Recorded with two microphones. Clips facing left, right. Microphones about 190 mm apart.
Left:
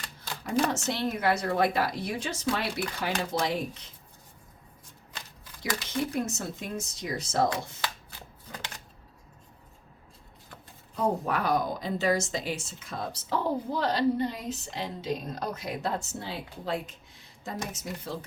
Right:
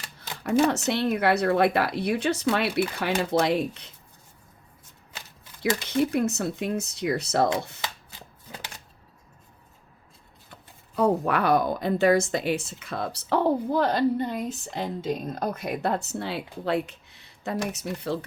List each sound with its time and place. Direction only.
0.7 s a woman's voice: 65° right (ahead or behind)
6.1 s a woman's voice: 65° right (ahead or behind)
10.9 s a woman's voice: 70° right (ahead or behind)